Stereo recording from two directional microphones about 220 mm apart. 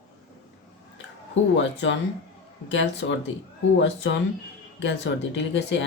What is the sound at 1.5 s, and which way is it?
Speech, 55° left (ahead or behind).